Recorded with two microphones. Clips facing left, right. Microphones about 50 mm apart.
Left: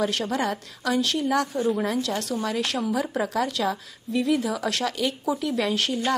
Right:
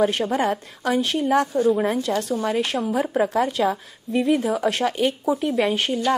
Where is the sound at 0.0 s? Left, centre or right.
Right.